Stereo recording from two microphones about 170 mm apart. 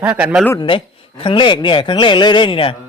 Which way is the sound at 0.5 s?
30° left (ahead or behind).